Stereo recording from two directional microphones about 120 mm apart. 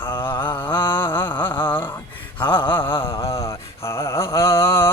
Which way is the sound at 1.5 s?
40° left (ahead or behind).